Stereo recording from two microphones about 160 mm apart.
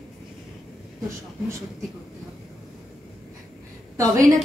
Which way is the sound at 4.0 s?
20° right (ahead or behind).